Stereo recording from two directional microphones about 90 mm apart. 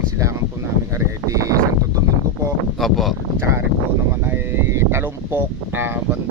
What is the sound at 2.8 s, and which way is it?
Speech, centre (ahead or behind).